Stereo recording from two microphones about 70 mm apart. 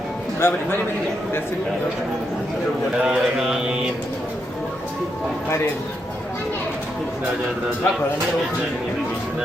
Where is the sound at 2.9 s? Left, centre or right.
Centre.